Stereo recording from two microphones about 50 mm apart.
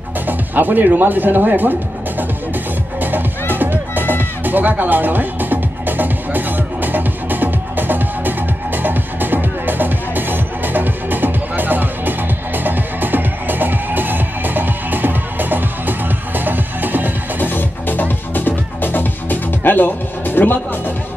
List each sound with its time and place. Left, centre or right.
0.3 s speech: right
3.0 s music: right
17.4 s music: left